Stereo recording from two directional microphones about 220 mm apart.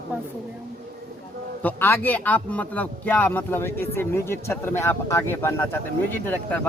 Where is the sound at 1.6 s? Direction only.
10° left (ahead or behind).